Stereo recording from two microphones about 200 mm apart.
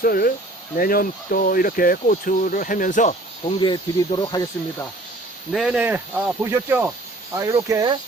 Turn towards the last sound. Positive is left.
turn(degrees=-20)  # may be behind; listen again after turning